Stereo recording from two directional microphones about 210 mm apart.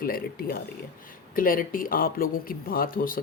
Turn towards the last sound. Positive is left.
turn(degrees=40)  # may be behind; listen again after turning